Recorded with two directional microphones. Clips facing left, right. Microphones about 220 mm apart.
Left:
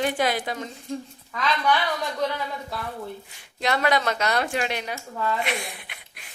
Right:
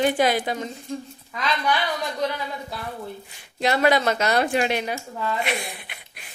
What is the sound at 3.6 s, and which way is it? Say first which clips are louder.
Speech: right 3 dB; 30° right (ahead or behind).